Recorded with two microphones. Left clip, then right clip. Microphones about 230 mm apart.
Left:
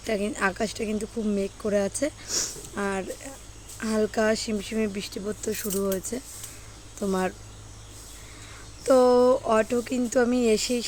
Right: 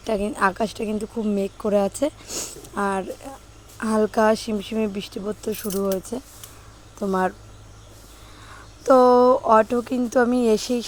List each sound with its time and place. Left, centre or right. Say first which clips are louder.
0.0 s speech: right 5 dB; centre
8.8 s speech: right 4 dB; centre